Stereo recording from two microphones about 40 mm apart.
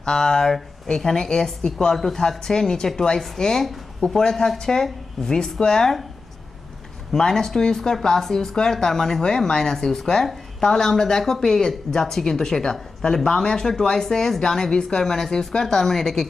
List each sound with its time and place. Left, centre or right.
0.0 s speech: centre
7.1 s speech: centre